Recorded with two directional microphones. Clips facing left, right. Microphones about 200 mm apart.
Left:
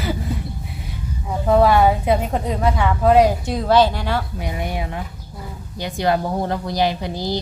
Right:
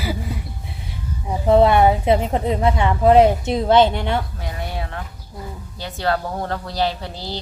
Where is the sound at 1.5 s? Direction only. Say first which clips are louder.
Right 1 dB; 25° right (ahead or behind).